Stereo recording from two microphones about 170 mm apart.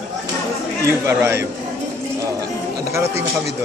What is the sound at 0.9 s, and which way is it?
Speech, 15° right (ahead or behind).